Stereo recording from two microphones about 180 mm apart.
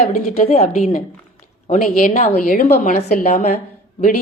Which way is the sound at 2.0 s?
45° left (ahead or behind).